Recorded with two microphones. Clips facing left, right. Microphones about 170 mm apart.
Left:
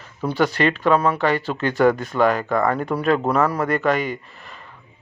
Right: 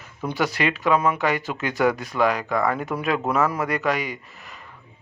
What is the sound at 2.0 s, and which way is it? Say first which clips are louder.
Speech: left 3 dB; centre (ahead or behind).